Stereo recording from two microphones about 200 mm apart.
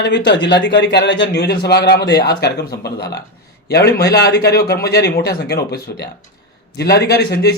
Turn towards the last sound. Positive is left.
turn(degrees=55)  # may be behind; listen again after turning